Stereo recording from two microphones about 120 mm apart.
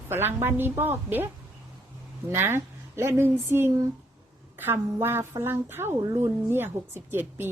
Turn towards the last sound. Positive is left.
turn(degrees=-20)  # may be behind; listen again after turning